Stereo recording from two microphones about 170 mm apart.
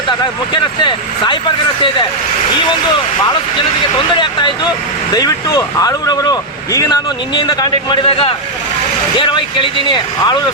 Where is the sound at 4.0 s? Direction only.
25° left (ahead or behind).